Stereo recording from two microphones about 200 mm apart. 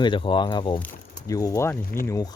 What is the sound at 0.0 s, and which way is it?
Speech, 25° left (ahead or behind).